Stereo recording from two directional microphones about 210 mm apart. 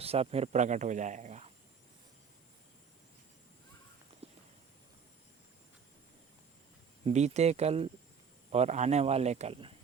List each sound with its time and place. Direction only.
0.0 s speech: 30° right (ahead or behind)
4.2 s walk: 30° right (ahead or behind)
7.0 s speech: 30° right (ahead or behind)